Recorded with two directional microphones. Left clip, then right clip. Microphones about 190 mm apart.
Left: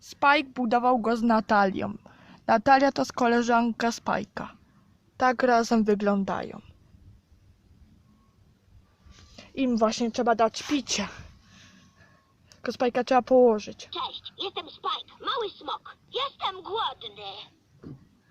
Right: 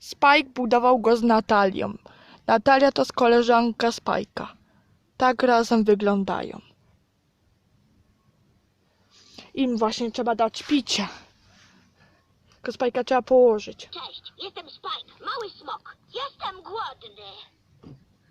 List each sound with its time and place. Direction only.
0.0 s speech: 40° right (ahead or behind)
9.3 s a woman's voice: 35° right (ahead or behind)
10.7 s speech: 30° right (ahead or behind)
12.6 s speech: 15° right (ahead or behind)
13.9 s speech: 30° left (ahead or behind)